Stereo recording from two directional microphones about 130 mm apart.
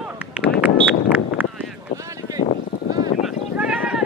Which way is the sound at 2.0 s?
25° right (ahead or behind).